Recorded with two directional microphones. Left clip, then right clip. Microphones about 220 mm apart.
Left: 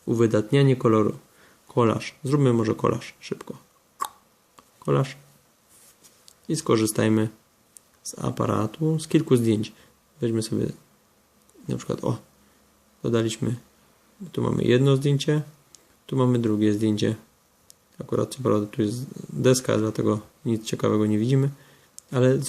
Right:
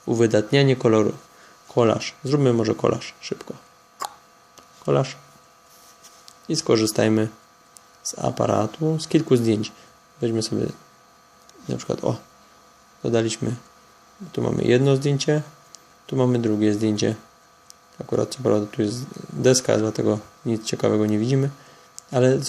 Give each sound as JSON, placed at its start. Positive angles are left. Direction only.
{"t": 0.1, "sound": "speech", "side_deg": 20}
{"t": 4.0, "sound": "a sound", "side_deg": 20}
{"t": 6.2, "sound": "speech", "side_deg": 20}